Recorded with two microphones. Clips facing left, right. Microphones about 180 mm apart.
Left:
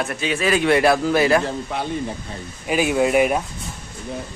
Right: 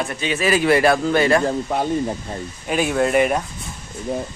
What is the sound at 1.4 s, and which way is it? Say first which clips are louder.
Speech: right 5 dB; 45° right (ahead or behind).